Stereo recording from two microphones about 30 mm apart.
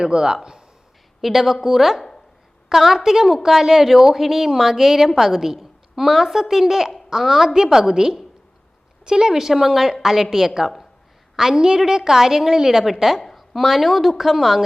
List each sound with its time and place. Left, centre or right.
0.0 s a woman's voice: right
1.2 s a woman's voice: centre